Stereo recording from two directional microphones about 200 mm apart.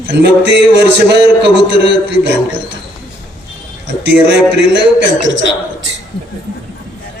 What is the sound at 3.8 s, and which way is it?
A man's voice, 60° right (ahead or behind).